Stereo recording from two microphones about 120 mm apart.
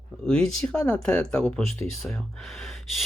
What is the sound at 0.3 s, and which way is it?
Speech, 10° left (ahead or behind).